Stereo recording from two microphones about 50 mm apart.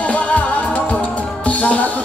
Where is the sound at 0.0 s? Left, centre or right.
Left.